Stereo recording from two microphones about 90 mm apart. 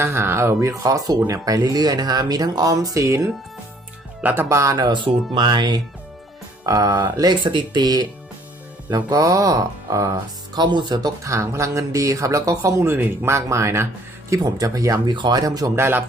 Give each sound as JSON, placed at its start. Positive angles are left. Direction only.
{"t": 0.0, "sound": "speech", "side_deg": -25}
{"t": 4.2, "sound": "speech", "side_deg": -20}
{"t": 4.4, "sound": "speech", "side_deg": -35}
{"t": 4.9, "sound": "speech", "side_deg": -65}
{"t": 6.7, "sound": "speech", "side_deg": -40}
{"t": 11.2, "sound": "speech", "side_deg": -35}
{"t": 15.1, "sound": "speech", "side_deg": -55}
{"t": 15.4, "sound": "speech", "side_deg": -40}
{"t": 15.7, "sound": "speech", "side_deg": -25}